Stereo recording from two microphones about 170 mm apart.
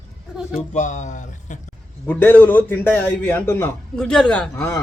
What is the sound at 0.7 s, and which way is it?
Speech, 45° left (ahead or behind).